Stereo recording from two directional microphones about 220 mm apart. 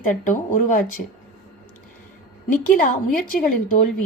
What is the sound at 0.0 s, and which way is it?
Speech, 35° left (ahead or behind).